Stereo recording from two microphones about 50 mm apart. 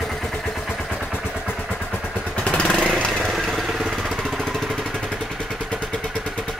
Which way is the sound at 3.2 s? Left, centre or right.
Centre.